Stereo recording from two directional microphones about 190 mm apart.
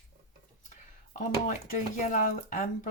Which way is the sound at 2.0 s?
40° left (ahead or behind).